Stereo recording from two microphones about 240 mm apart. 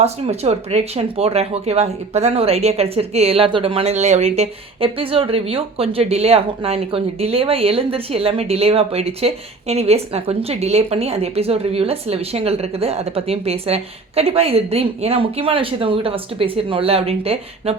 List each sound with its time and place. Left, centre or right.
0.0 s speech: right